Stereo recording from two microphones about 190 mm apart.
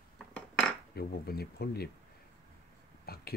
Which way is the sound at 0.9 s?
55° left (ahead or behind).